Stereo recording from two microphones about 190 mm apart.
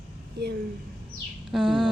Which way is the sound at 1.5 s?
Centre (ahead or behind).